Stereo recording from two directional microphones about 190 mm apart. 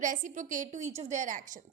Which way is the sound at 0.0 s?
45° right (ahead or behind).